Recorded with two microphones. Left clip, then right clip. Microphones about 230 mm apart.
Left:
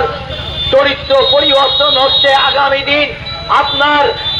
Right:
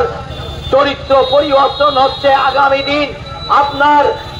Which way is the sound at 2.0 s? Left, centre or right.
Right.